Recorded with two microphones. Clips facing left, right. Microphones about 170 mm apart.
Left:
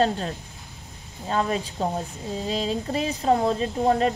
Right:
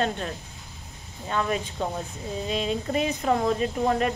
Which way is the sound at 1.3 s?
30° left (ahead or behind).